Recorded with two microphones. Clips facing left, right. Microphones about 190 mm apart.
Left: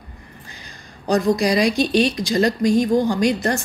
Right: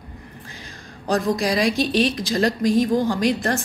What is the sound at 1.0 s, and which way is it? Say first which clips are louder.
Speech: left 3 dB; centre (ahead or behind).